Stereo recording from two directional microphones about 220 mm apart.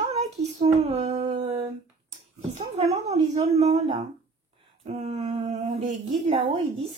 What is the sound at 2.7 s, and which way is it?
Speech, 30° right (ahead or behind).